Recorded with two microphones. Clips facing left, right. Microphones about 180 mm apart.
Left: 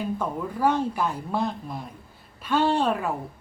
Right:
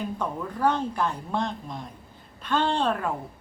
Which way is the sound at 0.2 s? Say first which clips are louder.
Right 1 dB; 10° left (ahead or behind).